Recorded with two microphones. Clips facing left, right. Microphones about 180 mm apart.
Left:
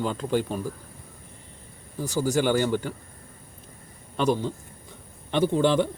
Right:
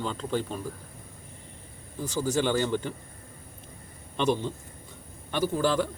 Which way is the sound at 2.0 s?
10° left (ahead or behind).